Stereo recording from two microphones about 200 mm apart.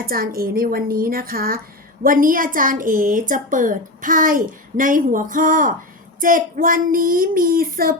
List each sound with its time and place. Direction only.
0.0 s child singing: 50° right (ahead or behind)
2.0 s a woman's voice: 45° right (ahead or behind)
6.1 s child singing: 45° right (ahead or behind)